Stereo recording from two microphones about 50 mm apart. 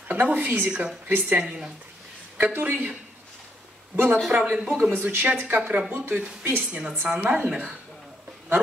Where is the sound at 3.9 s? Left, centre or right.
Right.